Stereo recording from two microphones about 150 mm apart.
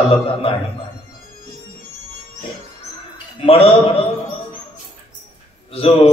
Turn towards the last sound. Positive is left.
turn(degrees=40)  # may be behind; listen again after turning